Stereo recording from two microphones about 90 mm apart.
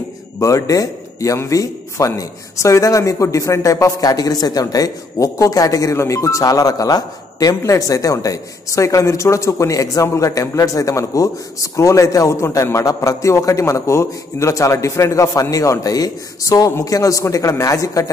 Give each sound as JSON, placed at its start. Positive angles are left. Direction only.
{"t": 0.4, "sound": "speech", "side_deg": 35}